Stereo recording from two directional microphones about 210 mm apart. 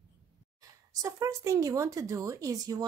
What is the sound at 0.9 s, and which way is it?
Speech, 15° right (ahead or behind).